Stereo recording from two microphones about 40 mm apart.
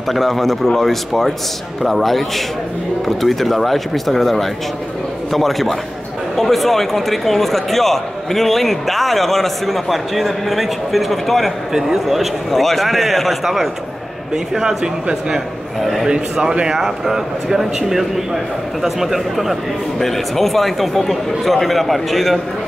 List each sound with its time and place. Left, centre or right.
0.1 s a man's voice: centre
15.8 s a man's voice: centre
16.1 s a man's voice: centre